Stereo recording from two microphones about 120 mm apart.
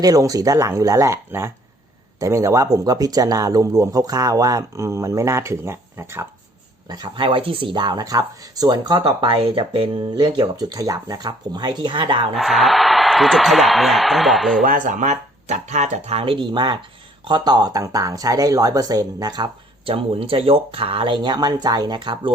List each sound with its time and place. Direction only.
0.0 s speech: 30° right (ahead or behind)
6.8 s speech: 35° right (ahead or behind)
9.2 s speech: 50° right (ahead or behind)
12.3 s a man's voice: centre (ahead or behind)
14.7 s speech: 90° right; by 22.3 s 40° right (ahead or behind)